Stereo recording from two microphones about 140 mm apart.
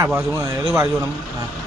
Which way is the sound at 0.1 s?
15° right (ahead or behind).